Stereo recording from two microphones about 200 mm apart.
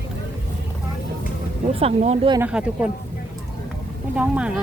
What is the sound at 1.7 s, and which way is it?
Speech, 30° right (ahead or behind).